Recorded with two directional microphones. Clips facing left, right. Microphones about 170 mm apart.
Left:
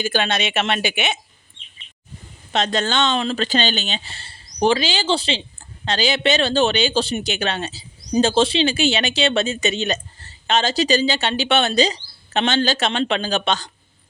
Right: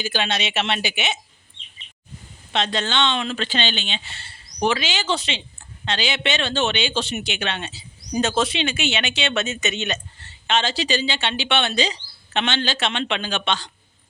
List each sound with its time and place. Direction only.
0.0 s a woman's voice: 50° left (ahead or behind)
2.5 s speech: 45° left (ahead or behind)